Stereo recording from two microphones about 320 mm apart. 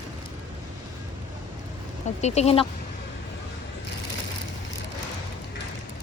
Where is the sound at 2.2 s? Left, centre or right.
Centre.